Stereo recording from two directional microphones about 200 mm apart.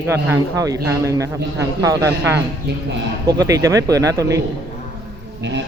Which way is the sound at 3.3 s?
20° right (ahead or behind).